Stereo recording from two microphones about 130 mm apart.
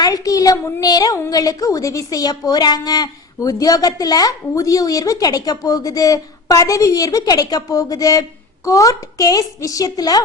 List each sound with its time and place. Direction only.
0.0 s a woman's voice: 25° left (ahead or behind)